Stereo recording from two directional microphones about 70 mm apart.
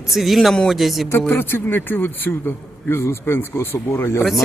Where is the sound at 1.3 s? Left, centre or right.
Left.